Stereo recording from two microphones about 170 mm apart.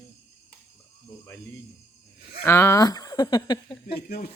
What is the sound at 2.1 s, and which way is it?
Cattle, 65° left (ahead or behind).